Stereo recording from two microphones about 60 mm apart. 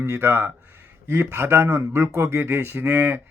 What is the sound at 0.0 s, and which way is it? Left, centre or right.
Speech, right.